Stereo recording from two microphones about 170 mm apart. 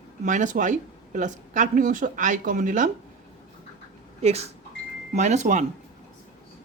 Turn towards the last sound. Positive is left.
turn(degrees=-45)  # may be behind; listen again after turning